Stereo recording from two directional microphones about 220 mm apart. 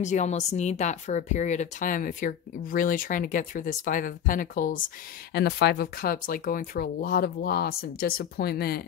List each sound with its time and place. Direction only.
0.0 s speech: 30° left (ahead or behind)